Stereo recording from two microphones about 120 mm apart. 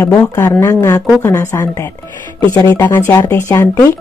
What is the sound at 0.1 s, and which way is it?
Speech, 15° left (ahead or behind).